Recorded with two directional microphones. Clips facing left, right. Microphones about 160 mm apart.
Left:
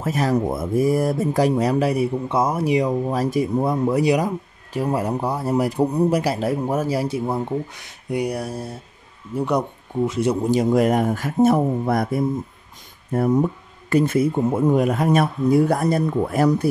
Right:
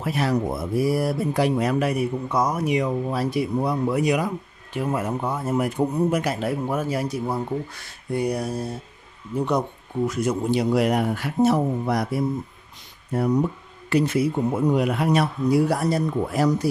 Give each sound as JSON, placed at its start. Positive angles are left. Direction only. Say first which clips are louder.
{"t": 0.0, "sound": "speech", "louder": "left 3 dB", "side_deg": 40}
{"t": 10.0, "sound": "speech", "louder": "left 3 dB", "side_deg": 25}
{"t": 10.5, "sound": "a man's voice", "louder": "left 3 dB", "side_deg": 45}